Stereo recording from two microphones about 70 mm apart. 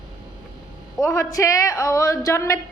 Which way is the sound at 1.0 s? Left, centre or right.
Left.